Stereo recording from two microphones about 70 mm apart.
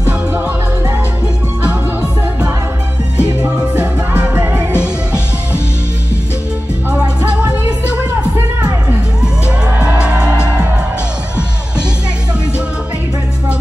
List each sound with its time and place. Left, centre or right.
3.4 s music: right
4.8 s music: centre
7.4 s music: centre
9.8 s music: centre